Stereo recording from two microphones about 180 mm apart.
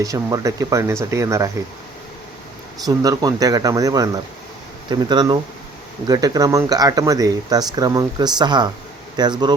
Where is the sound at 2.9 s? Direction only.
20° right (ahead or behind).